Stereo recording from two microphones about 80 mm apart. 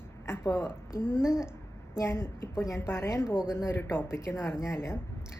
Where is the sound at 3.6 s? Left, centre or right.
Left.